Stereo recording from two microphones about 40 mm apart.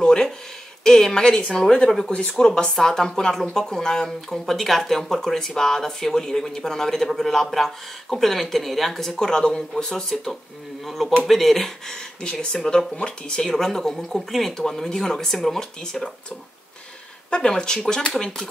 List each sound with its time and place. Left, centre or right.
0.0 s a sound: centre
0.8 s speech: centre
1.9 s speech: centre
10.9 s speech: centre
12.2 s speech: left; by 14.5 s centre
14.6 s speech: centre
17.3 s speech: left